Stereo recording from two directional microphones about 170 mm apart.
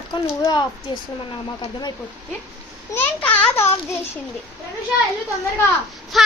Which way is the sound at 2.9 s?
10° left (ahead or behind).